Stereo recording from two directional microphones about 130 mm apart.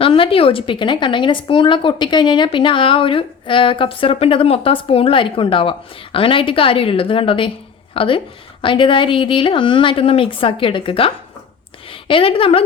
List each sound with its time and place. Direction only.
0.0 s a woman's voice: 45° left (ahead or behind)